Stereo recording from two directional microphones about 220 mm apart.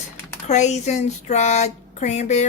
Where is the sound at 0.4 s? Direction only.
30° left (ahead or behind).